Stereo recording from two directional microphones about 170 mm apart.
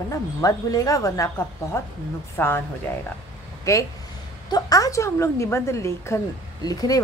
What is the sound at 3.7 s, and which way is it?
A woman's voice, 20° left (ahead or behind).